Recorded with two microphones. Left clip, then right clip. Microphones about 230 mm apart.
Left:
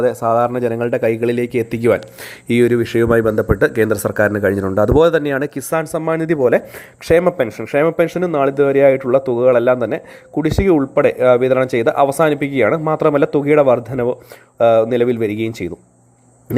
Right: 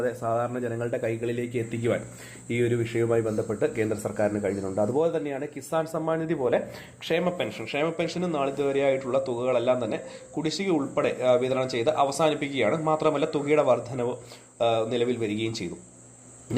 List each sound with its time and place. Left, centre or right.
0.0 s speech: left
7.3 s speech: left